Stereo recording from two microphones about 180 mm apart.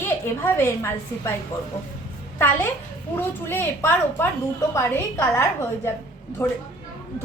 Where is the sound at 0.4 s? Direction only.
15° left (ahead or behind).